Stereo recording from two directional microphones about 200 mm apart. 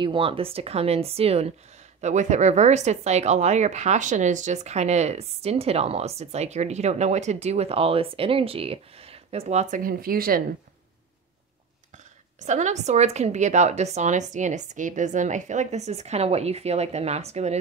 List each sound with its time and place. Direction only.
0.0 s speech: 25° right (ahead or behind); by 10.4 s 45° right (ahead or behind)
12.4 s speech: 35° right (ahead or behind)